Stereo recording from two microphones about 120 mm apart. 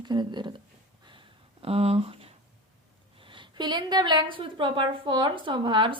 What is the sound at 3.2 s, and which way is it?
A woman's voice, 45° right (ahead or behind).